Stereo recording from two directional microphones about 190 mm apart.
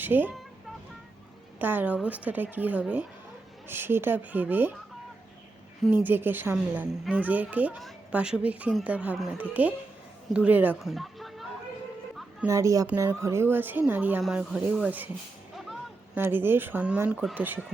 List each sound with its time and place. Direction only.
0.0 s speech: 10° right (ahead or behind)
1.5 s speech: 10° right (ahead or behind)
5.8 s speech: 10° right (ahead or behind)
12.5 s speech: 15° right (ahead or behind)
16.1 s speech: 10° right (ahead or behind)